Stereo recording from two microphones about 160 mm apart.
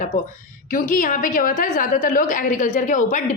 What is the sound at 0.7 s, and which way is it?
A woman's voice, 60° left (ahead or behind).